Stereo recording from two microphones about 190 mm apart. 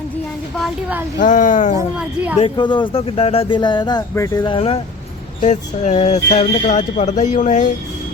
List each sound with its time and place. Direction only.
0.6 s a woman's voice: 10° right (ahead or behind)
1.2 s speech: 40° left (ahead or behind)
2.0 s a woman's voice: 5° right (ahead or behind)
2.4 s speech: 25° left (ahead or behind)
4.5 s speech: 30° left (ahead or behind)